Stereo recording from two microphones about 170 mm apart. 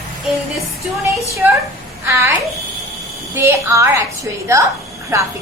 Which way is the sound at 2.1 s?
15° right (ahead or behind).